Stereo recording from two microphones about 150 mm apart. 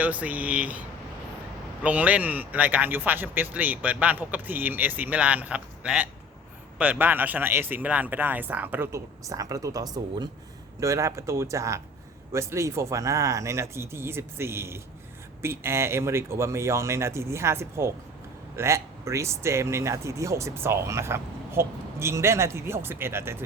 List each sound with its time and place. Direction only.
0.0 s speech: 10° right (ahead or behind)